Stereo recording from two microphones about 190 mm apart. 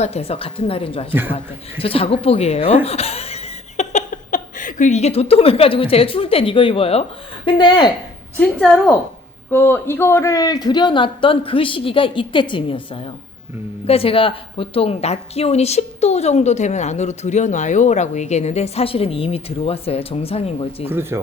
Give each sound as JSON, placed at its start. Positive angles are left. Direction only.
{"t": 0.0, "sound": "a man's voice", "side_deg": 30}
{"t": 1.1, "sound": "a man's voice", "side_deg": -10}
{"t": 1.8, "sound": "a man's voice", "side_deg": 30}
{"t": 9.5, "sound": "a man's voice", "side_deg": 10}
{"t": 13.8, "sound": "a woman's voice", "side_deg": 30}
{"t": 20.8, "sound": "a man's voice", "side_deg": -10}